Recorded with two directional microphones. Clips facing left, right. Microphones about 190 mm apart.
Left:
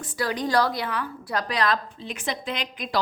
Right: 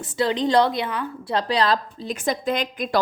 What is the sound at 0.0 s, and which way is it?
A woman's voice, 25° right (ahead or behind).